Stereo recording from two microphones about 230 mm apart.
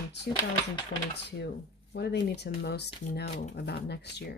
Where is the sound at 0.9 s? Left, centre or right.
Left.